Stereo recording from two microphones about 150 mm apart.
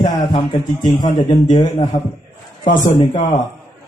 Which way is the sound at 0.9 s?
25° left (ahead or behind).